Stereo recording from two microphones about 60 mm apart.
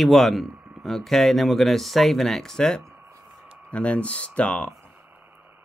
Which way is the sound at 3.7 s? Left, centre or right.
Left.